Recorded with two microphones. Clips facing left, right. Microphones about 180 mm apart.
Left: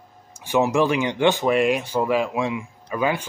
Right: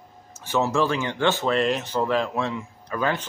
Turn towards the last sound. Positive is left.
turn(degrees=10)  # may be behind; listen again after turning